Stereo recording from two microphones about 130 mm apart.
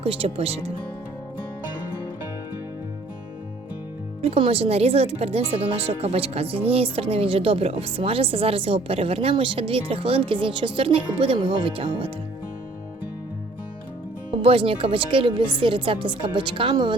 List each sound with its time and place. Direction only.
0.0 s speech: 45° right (ahead or behind)
4.2 s speech: 50° right (ahead or behind)
14.3 s speech: 45° right (ahead or behind)